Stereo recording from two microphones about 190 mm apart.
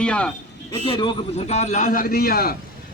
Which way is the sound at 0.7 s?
25° left (ahead or behind).